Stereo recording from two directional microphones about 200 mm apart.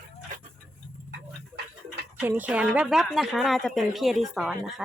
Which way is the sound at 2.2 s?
10° right (ahead or behind).